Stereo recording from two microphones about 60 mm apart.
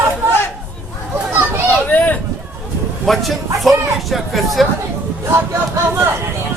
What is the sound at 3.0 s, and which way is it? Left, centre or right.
Speech, centre.